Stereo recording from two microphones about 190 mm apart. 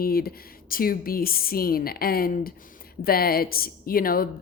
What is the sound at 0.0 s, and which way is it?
A woman's voice, 50° left (ahead or behind).